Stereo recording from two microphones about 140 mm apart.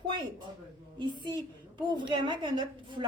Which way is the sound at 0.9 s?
35° right (ahead or behind).